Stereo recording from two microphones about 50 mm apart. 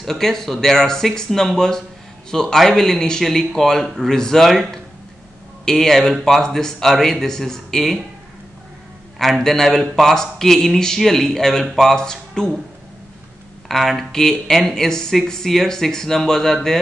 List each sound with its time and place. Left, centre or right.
0.0 s speech: centre
9.2 s a man's voice: centre
13.7 s speech: centre